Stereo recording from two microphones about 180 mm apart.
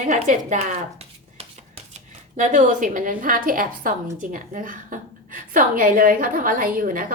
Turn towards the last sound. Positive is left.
turn(degrees=-50)  # may be behind; listen again after turning